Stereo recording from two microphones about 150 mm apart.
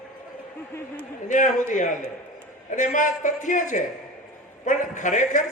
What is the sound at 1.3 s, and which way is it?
A man's voice, 60° left (ahead or behind).